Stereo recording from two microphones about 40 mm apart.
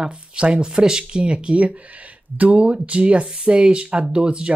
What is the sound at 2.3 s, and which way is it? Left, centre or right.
Speech, right.